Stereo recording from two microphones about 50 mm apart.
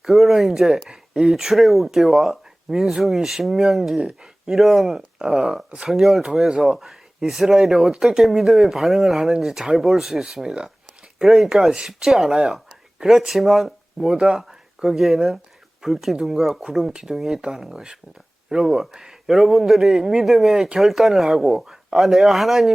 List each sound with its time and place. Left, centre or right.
0.0 s speech: centre
4.5 s speech: centre
5.9 s speech: centre
7.9 s speech: centre
8.2 s speech: centre
10.2 s a man's voice: centre